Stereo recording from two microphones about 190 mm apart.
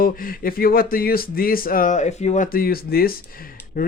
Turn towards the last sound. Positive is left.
turn(degrees=50)  # may be behind; listen again after turning